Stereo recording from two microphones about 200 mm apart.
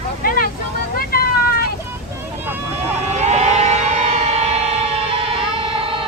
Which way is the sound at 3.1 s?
35° right (ahead or behind).